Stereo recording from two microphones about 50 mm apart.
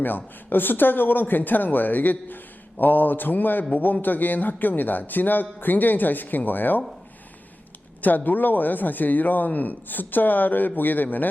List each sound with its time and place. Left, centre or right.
0.0 s a man's voice: left
8.0 s a man's voice: left